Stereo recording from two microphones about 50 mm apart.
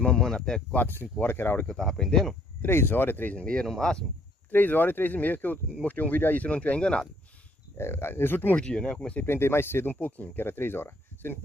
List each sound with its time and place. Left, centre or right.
0.2 s speech: centre
0.7 s speech: left
1.7 s speech: centre
2.6 s speech: left
3.3 s speech: left
4.5 s speech: left
7.7 s speech: left
8.5 s speech: centre
9.2 s speech: left
10.0 s speech: left